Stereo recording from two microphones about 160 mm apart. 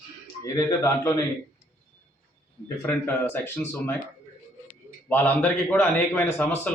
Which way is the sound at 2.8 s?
10° left (ahead or behind).